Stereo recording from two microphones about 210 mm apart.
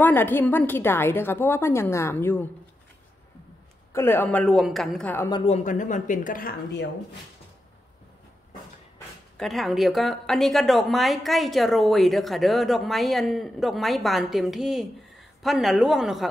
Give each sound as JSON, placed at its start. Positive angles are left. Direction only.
{"t": 0.0, "sound": "a woman's voice", "side_deg": 10}
{"t": 3.9, "sound": "a woman's voice", "side_deg": 10}
{"t": 5.4, "sound": "a woman's voice", "side_deg": 35}
{"t": 9.4, "sound": "a woman's voice", "side_deg": 0}